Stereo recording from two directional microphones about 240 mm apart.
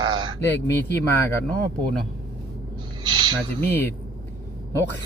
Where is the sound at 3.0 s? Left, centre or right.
Centre.